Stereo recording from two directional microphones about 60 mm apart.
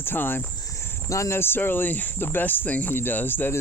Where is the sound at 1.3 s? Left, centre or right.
Left.